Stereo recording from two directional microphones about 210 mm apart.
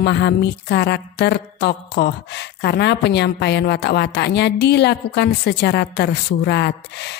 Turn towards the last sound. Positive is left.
turn(degrees=55)  # may be behind; listen again after turning